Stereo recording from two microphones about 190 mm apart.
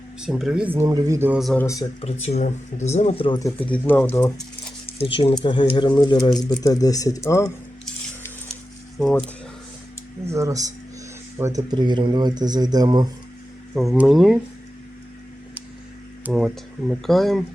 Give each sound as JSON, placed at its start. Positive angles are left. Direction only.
{"t": 0.2, "sound": "speech", "side_deg": 0}
{"t": 1.5, "sound": "speech", "side_deg": 15}
{"t": 2.0, "sound": "speech", "side_deg": 35}
{"t": 3.3, "sound": "speech", "side_deg": 15}
{"t": 5.0, "sound": "speech", "side_deg": 30}
{"t": 9.0, "sound": "speech", "side_deg": 5}
{"t": 10.3, "sound": "a man's voice", "side_deg": -15}
{"t": 13.7, "sound": "speech", "side_deg": 0}
{"t": 16.2, "sound": "speech", "side_deg": 0}